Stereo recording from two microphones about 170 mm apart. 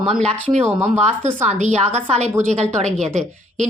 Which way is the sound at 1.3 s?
45° right (ahead or behind).